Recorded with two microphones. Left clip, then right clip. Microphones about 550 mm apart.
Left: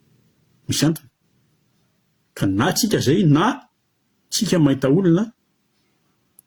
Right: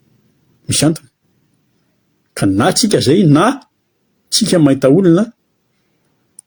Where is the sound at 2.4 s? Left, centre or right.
Left.